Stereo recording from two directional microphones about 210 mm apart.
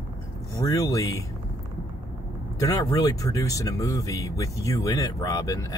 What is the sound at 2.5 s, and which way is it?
Speech, 15° left (ahead or behind).